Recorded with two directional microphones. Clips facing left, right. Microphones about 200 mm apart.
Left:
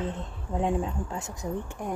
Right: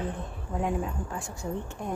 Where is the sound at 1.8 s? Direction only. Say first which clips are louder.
Left 1 dB; 10° left (ahead or behind).